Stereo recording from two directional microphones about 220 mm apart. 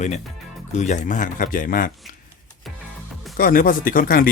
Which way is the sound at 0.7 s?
30° left (ahead or behind).